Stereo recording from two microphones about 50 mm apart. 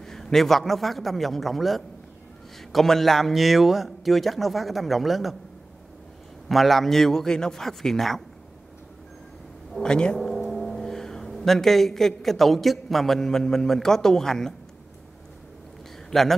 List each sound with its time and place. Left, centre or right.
0.0 s a man's voice: centre
6.5 s a man's voice: centre
9.8 s a man's voice: centre
10.1 s speech: centre
16.1 s speech: centre